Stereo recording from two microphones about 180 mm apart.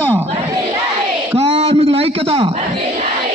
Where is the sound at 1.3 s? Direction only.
35° right (ahead or behind).